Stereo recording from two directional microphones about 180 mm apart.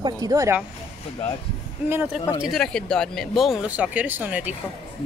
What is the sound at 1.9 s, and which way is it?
Speech, 10° right (ahead or behind).